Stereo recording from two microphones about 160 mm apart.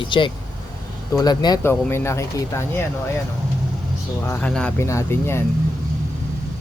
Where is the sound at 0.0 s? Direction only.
30° left (ahead or behind).